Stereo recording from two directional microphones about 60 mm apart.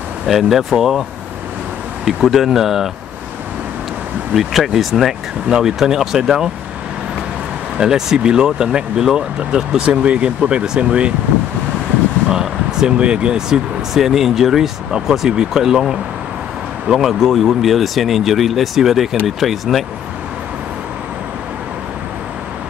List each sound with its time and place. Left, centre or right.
0.3 s speech: centre
2.0 s speech: centre
4.4 s speech: centre
7.7 s speech: centre
12.3 s speech: centre
13.9 s speech: centre